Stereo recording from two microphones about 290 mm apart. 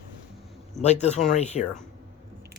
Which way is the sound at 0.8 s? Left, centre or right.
Left.